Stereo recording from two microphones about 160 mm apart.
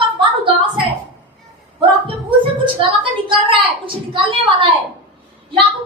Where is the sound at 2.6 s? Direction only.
30° right (ahead or behind).